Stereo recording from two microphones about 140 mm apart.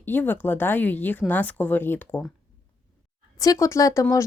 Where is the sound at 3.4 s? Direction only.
25° left (ahead or behind).